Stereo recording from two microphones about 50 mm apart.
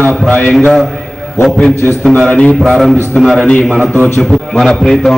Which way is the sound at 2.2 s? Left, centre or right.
Centre.